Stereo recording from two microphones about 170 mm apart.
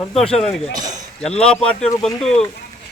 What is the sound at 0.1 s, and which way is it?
Speech, centre (ahead or behind).